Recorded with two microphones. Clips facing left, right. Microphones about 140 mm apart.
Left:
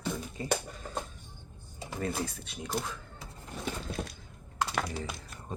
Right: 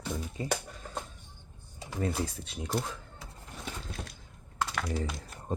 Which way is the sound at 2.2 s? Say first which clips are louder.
Right 1 dB; 30° right (ahead or behind).